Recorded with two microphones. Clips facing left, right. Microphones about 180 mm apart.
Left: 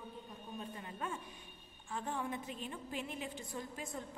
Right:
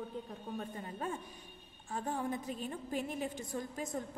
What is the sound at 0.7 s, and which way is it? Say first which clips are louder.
A woman's voice: right 3 dB; 40° right (ahead or behind).